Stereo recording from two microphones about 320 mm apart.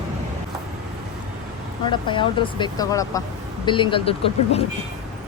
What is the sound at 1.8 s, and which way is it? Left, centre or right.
Speech, centre.